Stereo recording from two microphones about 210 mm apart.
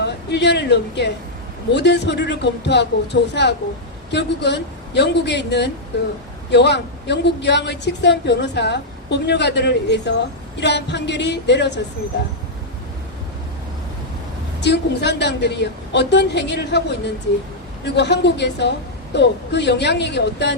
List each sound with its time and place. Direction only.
0.0 s a woman's voice: 55° left (ahead or behind)
14.6 s a woman's voice: 55° left (ahead or behind)
17.8 s a woman's voice: 55° left (ahead or behind)